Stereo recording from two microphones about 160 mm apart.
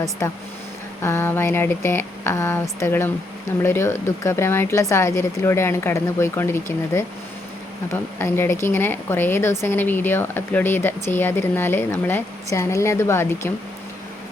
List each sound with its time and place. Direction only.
1.0 s a woman's voice: 15° left (ahead or behind)
7.9 s a woman's voice: 15° left (ahead or behind)